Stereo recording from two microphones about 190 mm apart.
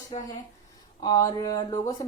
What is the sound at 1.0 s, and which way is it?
Speech, 20° left (ahead or behind).